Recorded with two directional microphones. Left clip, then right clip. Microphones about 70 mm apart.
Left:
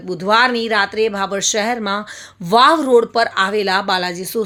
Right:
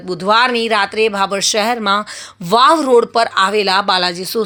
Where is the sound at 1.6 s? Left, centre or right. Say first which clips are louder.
Right 5 dB; right.